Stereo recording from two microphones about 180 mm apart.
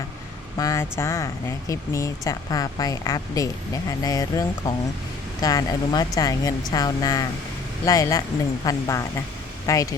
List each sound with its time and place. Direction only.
0.6 s speech: 15° left (ahead or behind)